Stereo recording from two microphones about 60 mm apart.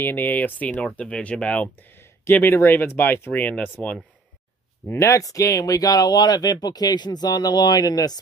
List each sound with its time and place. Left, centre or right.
0.0 s speech: left
2.3 s speech: left
3.4 s speech: left
4.9 s speech: left